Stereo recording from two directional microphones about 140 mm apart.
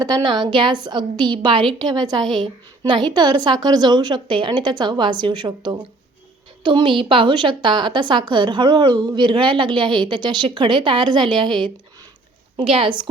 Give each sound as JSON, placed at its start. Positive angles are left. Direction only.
{"t": 0.0, "sound": "a woman's voice", "side_deg": -30}